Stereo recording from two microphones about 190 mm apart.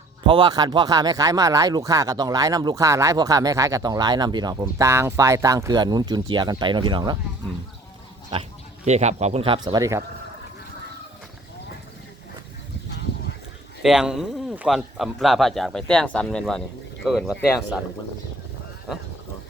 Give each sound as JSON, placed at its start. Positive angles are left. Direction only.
{"t": 0.3, "sound": "speech", "side_deg": -25}
{"t": 8.3, "sound": "speech", "side_deg": -30}
{"t": 9.6, "sound": "speech", "side_deg": -20}
{"t": 13.8, "sound": "speech", "side_deg": -5}